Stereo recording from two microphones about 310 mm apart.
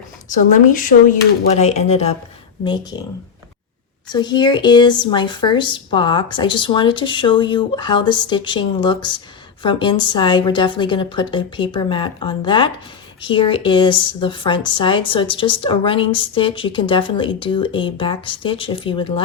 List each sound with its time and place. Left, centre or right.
0.3 s speech: left
4.1 s a woman's voice: centre